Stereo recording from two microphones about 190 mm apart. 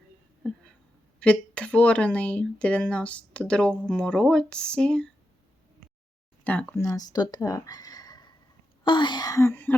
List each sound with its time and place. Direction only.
1.2 s speech: 5° left (ahead or behind)
6.4 s speech: 10° left (ahead or behind)